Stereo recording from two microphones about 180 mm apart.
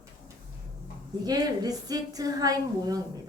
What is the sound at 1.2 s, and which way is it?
A woman's voice, 20° right (ahead or behind).